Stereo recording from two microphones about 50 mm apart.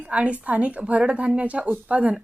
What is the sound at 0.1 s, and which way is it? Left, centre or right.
Speech, right.